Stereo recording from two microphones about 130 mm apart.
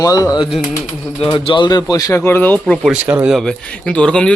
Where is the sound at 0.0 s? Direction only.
30° left (ahead or behind).